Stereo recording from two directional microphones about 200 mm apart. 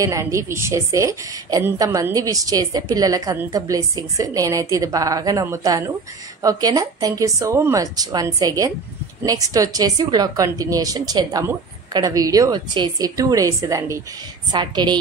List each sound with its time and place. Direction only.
0.0 s a woman's voice: 15° right (ahead or behind)